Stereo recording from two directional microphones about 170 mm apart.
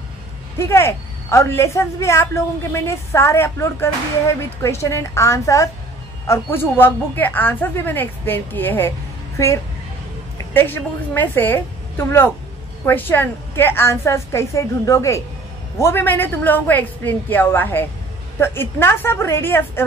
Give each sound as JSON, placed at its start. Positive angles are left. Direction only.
{"t": 0.6, "sound": "a woman's voice", "side_deg": 15}
{"t": 10.3, "sound": "a woman's voice", "side_deg": 15}